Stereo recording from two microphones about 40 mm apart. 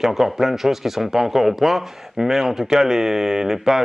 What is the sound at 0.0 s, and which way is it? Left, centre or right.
A man's voice, centre.